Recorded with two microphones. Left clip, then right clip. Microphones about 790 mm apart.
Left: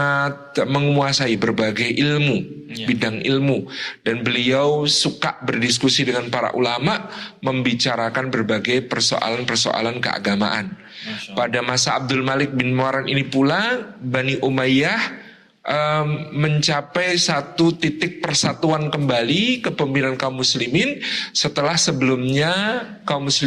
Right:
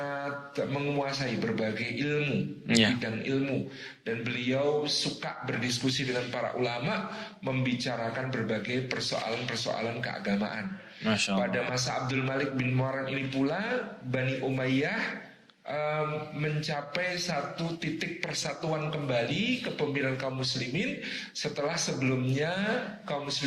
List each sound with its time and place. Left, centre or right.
0.0 s a man's voice: left
4.0 s a man's voice: left